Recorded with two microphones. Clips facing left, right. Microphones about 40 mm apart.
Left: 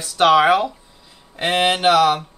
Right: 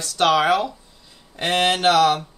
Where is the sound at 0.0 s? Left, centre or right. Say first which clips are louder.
Left 4 dB; centre.